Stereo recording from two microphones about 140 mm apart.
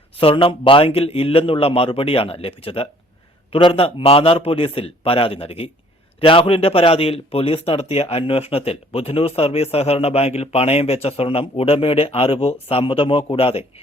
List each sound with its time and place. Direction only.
0.2 s a man's voice: 40° left (ahead or behind)